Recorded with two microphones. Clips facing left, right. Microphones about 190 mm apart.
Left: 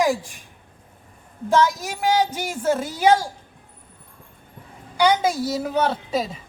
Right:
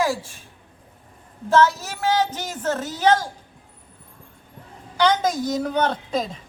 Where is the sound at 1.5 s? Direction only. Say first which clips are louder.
Right 1 dB; 15° left (ahead or behind).